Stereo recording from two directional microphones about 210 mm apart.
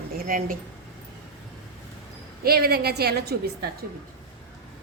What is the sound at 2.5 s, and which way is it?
A woman's voice, 45° right (ahead or behind).